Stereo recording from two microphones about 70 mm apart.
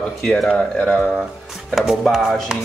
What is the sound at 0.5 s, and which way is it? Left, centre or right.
Speech, centre.